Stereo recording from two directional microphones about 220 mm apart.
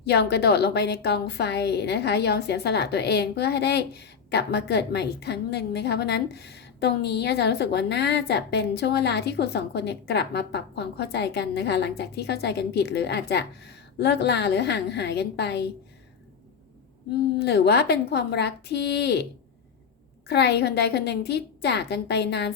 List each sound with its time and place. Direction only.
0.0 s a woman's voice: 50° left (ahead or behind)
17.3 s a woman's voice: 50° left (ahead or behind)
20.2 s a woman's voice: 50° left (ahead or behind)